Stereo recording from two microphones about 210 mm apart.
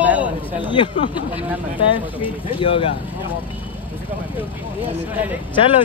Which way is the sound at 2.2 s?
25° left (ahead or behind).